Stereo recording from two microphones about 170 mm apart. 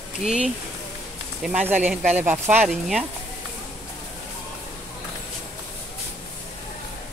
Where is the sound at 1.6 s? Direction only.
10° right (ahead or behind).